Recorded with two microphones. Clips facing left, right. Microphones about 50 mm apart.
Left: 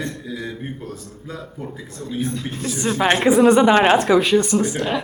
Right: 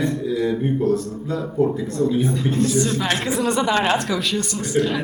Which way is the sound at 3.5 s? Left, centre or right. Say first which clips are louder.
Left 4 dB; left.